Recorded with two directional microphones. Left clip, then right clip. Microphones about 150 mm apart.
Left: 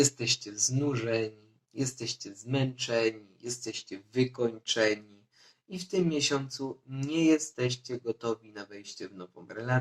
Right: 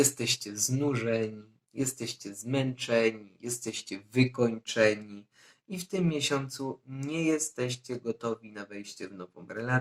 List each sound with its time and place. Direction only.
0.0 s speech: 50° right (ahead or behind)
6.1 s speech: 45° right (ahead or behind)